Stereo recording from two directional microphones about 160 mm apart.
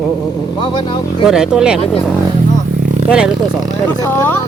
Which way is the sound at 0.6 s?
30° left (ahead or behind).